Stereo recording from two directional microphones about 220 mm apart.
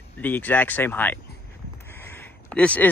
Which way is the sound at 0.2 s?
10° left (ahead or behind).